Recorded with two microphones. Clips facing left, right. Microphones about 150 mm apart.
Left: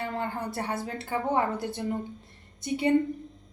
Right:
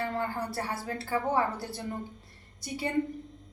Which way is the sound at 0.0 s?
20° left (ahead or behind).